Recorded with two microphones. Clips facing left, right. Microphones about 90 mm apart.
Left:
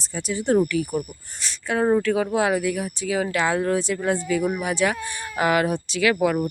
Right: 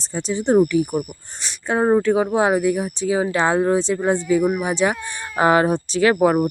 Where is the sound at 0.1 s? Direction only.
30° right (ahead or behind).